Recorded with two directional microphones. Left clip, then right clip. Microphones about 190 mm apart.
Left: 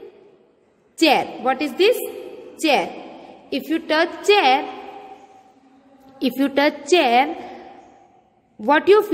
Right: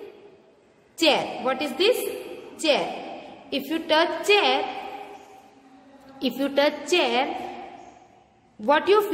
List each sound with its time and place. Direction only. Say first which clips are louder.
0.9 s a woman's voice: left 4 dB; 35° left (ahead or behind)
6.1 s a woman's voice: left 4 dB; 35° left (ahead or behind)
8.5 s a woman's voice: left 5 dB; 35° left (ahead or behind)